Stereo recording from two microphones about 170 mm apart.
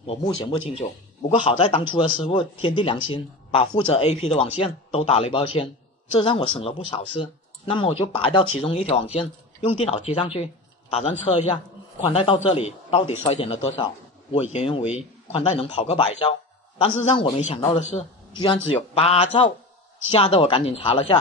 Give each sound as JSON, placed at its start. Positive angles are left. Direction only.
{"t": 0.0, "sound": "speech", "side_deg": 30}
{"t": 0.8, "sound": "a man's voice", "side_deg": 40}
{"t": 1.6, "sound": "speech", "side_deg": 30}
{"t": 11.3, "sound": "speech", "side_deg": 25}
{"t": 12.1, "sound": "a man's voice", "side_deg": 40}
{"t": 17.4, "sound": "speech", "side_deg": 45}